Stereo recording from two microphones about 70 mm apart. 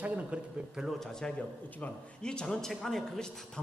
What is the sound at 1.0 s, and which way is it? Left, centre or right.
Speech, centre.